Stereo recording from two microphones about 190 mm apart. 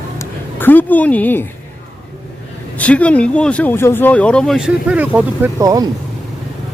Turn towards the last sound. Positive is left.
turn(degrees=-20)  # may be behind; listen again after turning